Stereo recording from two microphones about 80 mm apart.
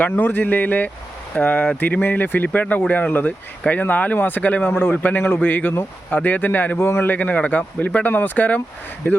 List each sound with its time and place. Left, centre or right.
0.0 s a man's voice: left